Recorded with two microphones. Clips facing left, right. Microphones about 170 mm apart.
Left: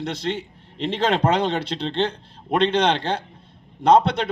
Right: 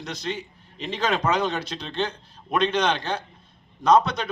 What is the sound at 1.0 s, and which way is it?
A man's voice, 30° left (ahead or behind).